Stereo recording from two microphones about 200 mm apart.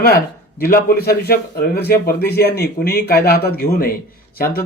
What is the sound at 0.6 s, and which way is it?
A man's voice, 50° left (ahead or behind).